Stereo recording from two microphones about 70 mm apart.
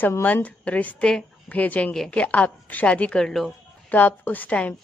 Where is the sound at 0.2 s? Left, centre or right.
Left.